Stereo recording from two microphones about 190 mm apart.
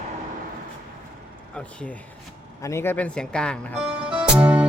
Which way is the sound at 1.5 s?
5° left (ahead or behind).